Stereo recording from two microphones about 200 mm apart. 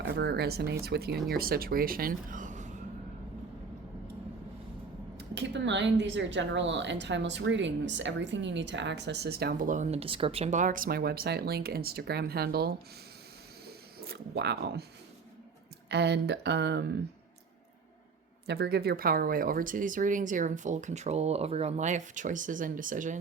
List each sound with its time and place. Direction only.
0.0 s speech: 55° right (ahead or behind); by 2.7 s 40° right (ahead or behind)
5.1 s speech: 60° right (ahead or behind)
15.9 s speech: 60° right (ahead or behind)
18.4 s speech: 55° right (ahead or behind)